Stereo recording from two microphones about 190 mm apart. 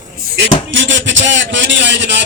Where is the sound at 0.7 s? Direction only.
75° right (ahead or behind).